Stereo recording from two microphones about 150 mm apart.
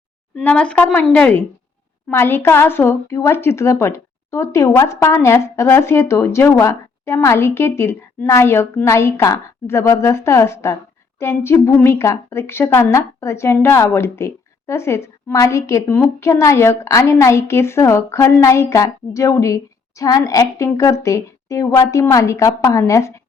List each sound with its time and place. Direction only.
0.4 s a woman's voice: 5° left (ahead or behind)